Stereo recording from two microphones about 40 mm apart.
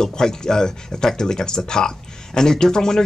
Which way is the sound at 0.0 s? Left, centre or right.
Centre.